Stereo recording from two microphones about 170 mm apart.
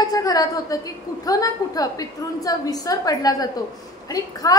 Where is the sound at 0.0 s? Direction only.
20° left (ahead or behind).